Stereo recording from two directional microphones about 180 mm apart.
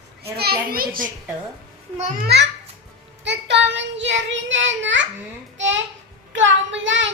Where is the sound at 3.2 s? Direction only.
75° right (ahead or behind).